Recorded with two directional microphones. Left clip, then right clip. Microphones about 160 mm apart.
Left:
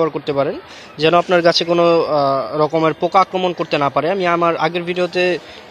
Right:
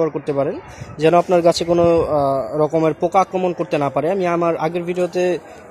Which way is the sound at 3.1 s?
15° right (ahead or behind).